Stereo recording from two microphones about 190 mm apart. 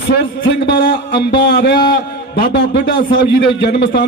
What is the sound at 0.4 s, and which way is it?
A man's voice, 65° left (ahead or behind).